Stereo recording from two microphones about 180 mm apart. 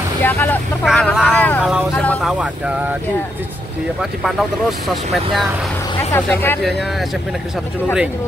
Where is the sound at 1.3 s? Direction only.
10° left (ahead or behind).